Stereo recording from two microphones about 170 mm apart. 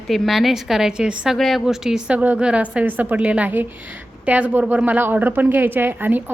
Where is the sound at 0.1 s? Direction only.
Centre (ahead or behind).